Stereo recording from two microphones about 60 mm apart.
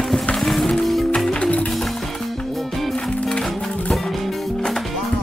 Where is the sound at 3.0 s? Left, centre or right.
Centre.